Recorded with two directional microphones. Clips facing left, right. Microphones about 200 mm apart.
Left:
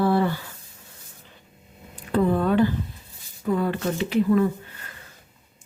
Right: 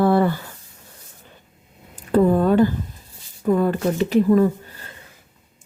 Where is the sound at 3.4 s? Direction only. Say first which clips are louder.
Right 5 dB; 45° right (ahead or behind).